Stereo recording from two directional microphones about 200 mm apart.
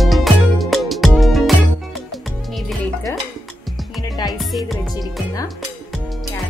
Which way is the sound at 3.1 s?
15° left (ahead or behind).